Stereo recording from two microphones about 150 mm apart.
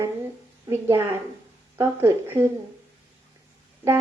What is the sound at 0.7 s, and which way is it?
A woman's voice, 20° right (ahead or behind).